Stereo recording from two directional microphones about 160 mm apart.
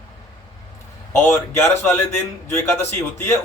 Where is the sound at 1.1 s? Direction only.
15° left (ahead or behind).